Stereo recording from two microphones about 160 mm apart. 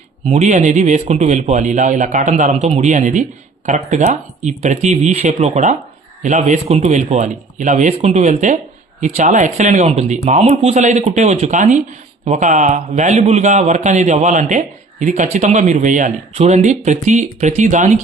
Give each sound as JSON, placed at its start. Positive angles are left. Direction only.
{"t": 0.3, "sound": "a man's voice", "side_deg": -45}